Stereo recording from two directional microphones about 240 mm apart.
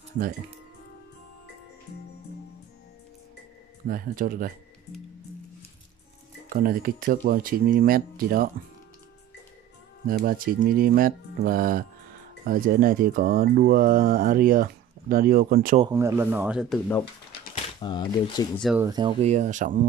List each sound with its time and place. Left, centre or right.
3.9 s speech: right
6.5 s speech: right
10.0 s speech: right
15.8 s speech: centre
17.7 s speech: centre
18.6 s speech: centre
18.9 s speech: centre